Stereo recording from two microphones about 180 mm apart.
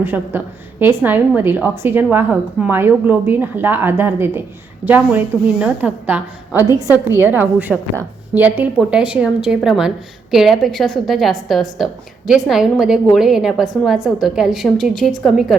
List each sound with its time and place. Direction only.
0.0 s a woman's voice: 10° right (ahead or behind)